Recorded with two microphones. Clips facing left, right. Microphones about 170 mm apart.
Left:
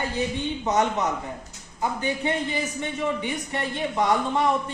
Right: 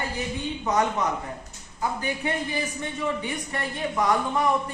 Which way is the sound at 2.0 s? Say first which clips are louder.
Left 2 dB; 20° left (ahead or behind).